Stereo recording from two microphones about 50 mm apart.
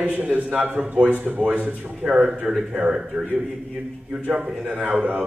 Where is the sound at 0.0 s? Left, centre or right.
Right.